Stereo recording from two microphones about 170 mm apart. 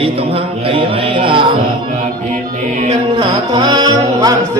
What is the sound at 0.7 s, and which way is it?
Music, 30° right (ahead or behind).